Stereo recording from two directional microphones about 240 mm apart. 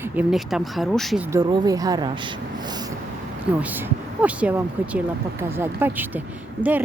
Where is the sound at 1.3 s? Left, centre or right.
Centre.